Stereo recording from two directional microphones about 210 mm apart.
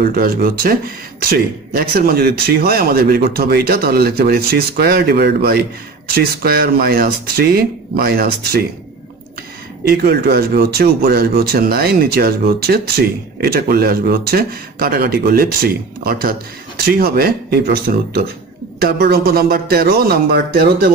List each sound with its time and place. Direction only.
0.0 s speech: 45° right (ahead or behind)
9.8 s speech: 45° right (ahead or behind)